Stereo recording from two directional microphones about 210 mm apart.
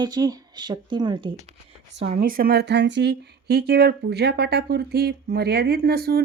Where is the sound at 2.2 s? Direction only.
45° right (ahead or behind).